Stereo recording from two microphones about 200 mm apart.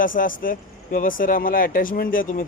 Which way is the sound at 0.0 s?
45° left (ahead or behind).